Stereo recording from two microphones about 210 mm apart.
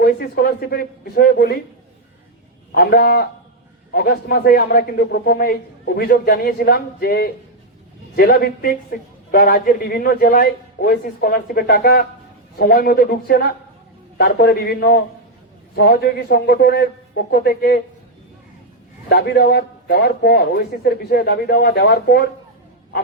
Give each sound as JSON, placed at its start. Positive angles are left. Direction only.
{"t": 0.0, "sound": "a man's voice", "side_deg": 45}
{"t": 2.7, "sound": "a man's voice", "side_deg": 45}
{"t": 19.0, "sound": "a man's voice", "side_deg": 50}